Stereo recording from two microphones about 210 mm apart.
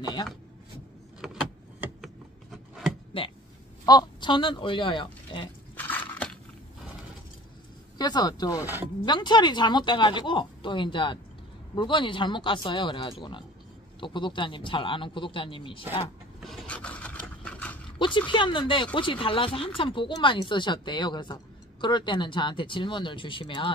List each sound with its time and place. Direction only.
0.0 s speech: 20° left (ahead or behind)
1.2 s vehicle: centre (ahead or behind)
3.1 s speech: 25° left (ahead or behind)
5.8 s biting: 10° left (ahead or behind)
8.0 s speech: 20° left (ahead or behind)
16.3 s scrape: centre (ahead or behind)
17.9 s speech: 20° left (ahead or behind)